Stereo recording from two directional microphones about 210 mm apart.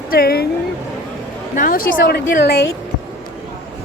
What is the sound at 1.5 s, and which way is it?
A woman's voice, 40° left (ahead or behind).